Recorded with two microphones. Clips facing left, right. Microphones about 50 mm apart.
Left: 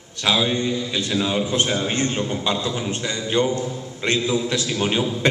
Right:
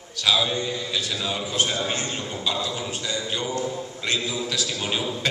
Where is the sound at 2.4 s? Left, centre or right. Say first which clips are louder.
Left 4 dB; left.